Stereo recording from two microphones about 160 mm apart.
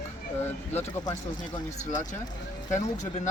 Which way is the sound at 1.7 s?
50° left (ahead or behind).